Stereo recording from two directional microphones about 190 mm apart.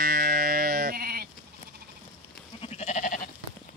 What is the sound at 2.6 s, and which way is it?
Goat, 35° left (ahead or behind).